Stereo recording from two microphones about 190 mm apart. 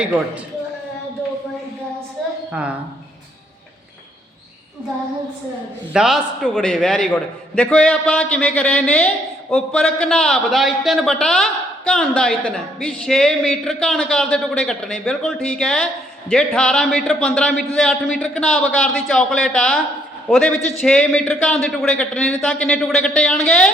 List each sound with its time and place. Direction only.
5.9 s a man's voice: 5° right (ahead or behind)